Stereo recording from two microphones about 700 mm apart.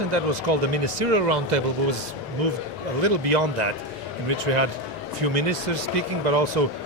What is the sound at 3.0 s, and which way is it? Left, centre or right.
Speech, right.